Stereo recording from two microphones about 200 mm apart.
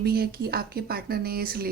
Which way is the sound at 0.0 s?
50° right (ahead or behind).